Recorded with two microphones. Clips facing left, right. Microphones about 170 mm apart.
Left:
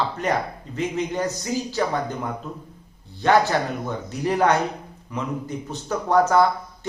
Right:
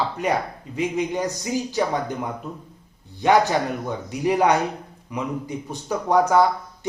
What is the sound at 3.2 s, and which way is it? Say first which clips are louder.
Speech: right 1 dB; 15° right (ahead or behind).